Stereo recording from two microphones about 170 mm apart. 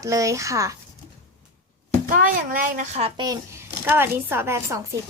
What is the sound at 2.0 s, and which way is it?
Speech, 50° right (ahead or behind).